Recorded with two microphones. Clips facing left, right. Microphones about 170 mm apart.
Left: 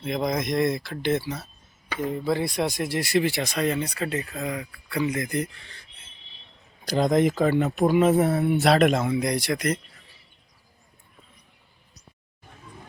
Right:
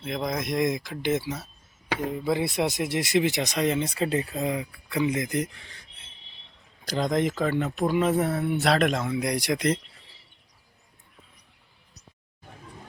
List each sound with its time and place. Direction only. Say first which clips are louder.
0.0 s speech: left 3 dB; centre (ahead or behind); by 5.7 s 15° right (ahead or behind)
6.8 s speech: left 4 dB; 10° left (ahead or behind)
9.2 s speech: left 1 dB; 10° right (ahead or behind)
9.6 s speech: right 1 dB; 25° right (ahead or behind)